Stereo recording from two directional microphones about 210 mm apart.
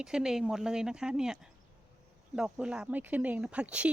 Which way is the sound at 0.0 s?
5° right (ahead or behind).